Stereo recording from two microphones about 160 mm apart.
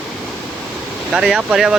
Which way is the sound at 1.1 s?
5° right (ahead or behind).